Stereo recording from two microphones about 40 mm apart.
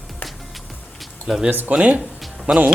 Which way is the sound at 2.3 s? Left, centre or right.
Right.